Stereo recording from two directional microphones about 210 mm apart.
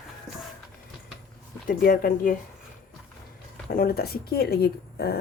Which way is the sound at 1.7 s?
45° left (ahead or behind).